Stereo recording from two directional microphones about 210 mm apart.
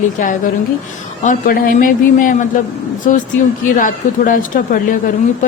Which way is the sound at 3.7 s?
40° left (ahead or behind).